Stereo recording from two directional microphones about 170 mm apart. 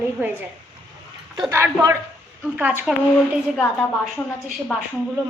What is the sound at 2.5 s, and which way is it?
Speech, 10° right (ahead or behind).